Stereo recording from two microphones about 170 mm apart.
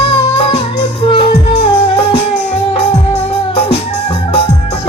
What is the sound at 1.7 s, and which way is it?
Music, 35° left (ahead or behind).